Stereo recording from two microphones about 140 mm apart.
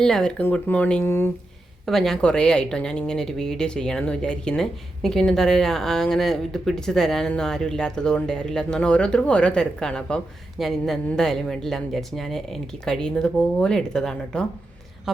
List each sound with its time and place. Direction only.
0.0 s a woman's voice: 5° left (ahead or behind)
1.8 s a woman's voice: centre (ahead or behind)